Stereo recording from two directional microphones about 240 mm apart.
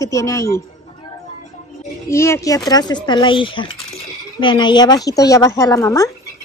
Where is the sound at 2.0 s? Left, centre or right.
Centre.